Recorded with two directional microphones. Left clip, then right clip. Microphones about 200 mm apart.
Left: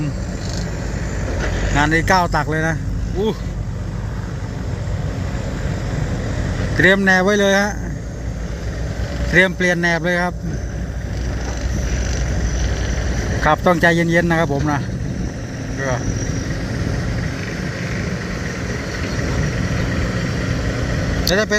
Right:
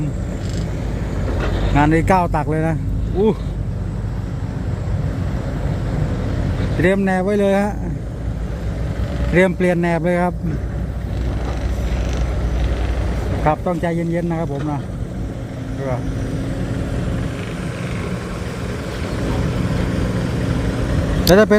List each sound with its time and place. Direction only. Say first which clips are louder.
1.7 s speech: even; 15° right (ahead or behind)
6.8 s speech: left 5 dB; 5° right (ahead or behind)
9.3 s speech: left 1 dB; 15° right (ahead or behind)
13.4 s speech: left 5 dB; centre (ahead or behind)
21.2 s speech: right 6 dB; 25° right (ahead or behind)